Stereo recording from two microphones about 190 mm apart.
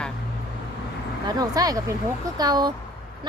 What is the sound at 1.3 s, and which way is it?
Speech, 20° right (ahead or behind).